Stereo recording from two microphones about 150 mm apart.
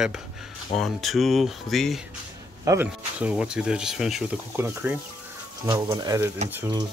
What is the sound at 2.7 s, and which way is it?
Speech, 10° right (ahead or behind).